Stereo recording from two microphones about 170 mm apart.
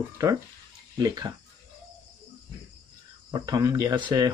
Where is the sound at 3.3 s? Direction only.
20° right (ahead or behind).